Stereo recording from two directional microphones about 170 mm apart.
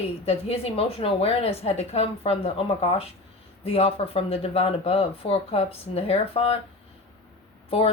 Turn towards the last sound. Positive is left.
turn(degrees=35)  # may be behind; listen again after turning